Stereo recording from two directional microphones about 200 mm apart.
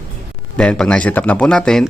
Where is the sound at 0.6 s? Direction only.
5° left (ahead or behind).